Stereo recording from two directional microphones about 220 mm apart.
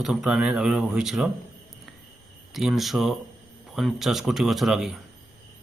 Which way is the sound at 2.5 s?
Centre (ahead or behind).